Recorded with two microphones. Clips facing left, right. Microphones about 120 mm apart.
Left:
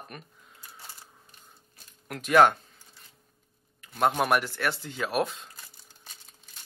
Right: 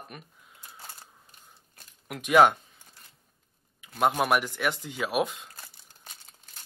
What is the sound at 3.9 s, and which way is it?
Speech, 5° right (ahead or behind).